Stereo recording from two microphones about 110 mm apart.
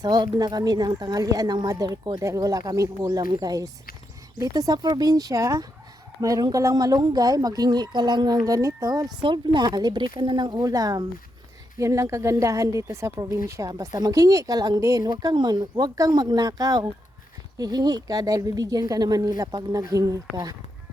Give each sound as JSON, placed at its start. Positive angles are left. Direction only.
{"t": 0.0, "sound": "a woman's voice", "side_deg": -35}
{"t": 9.2, "sound": "a woman's voice", "side_deg": -45}